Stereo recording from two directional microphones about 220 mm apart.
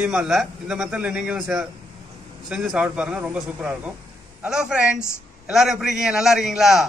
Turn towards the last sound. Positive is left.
turn(degrees=0)  # may be behind; listen again after turning